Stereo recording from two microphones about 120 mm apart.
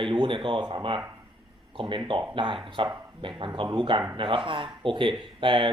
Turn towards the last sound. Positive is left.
turn(degrees=-45)  # may be behind; listen again after turning